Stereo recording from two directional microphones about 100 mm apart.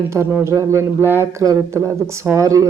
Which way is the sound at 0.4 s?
30° right (ahead or behind).